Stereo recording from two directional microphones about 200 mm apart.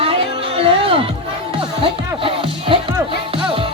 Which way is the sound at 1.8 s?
25° right (ahead or behind).